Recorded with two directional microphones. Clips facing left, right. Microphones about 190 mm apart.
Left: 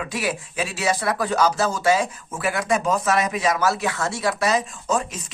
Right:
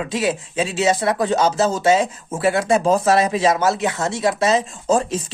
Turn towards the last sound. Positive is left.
turn(degrees=-30)  # may be behind; listen again after turning